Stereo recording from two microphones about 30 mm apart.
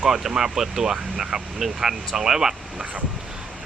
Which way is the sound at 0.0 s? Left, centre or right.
Centre.